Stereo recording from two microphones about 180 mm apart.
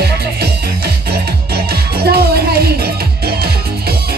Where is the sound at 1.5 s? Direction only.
60° right (ahead or behind).